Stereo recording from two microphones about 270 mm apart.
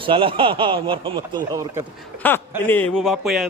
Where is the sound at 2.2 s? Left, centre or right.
Centre.